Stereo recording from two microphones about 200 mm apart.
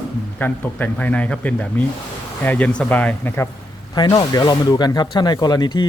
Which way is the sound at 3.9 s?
20° left (ahead or behind).